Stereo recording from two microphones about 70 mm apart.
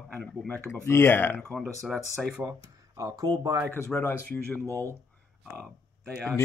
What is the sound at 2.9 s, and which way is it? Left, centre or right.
Speech, right.